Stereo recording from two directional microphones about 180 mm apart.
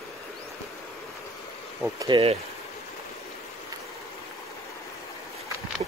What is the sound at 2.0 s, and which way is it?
Speech, 25° right (ahead or behind).